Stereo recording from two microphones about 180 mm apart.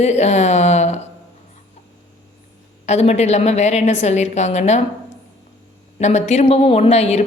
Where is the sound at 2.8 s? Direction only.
40° left (ahead or behind).